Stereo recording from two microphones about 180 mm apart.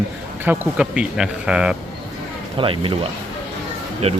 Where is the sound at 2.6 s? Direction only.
30° right (ahead or behind).